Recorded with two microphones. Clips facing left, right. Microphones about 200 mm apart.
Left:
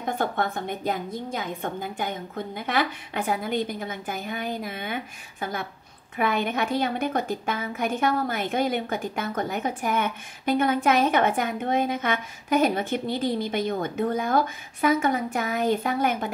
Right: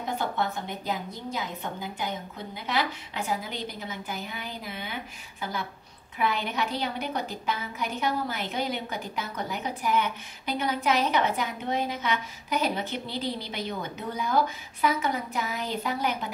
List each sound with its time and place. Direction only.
0.0 s a woman's voice: 50° left (ahead or behind)